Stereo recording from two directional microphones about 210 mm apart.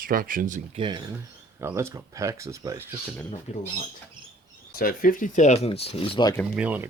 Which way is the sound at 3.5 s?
30° left (ahead or behind).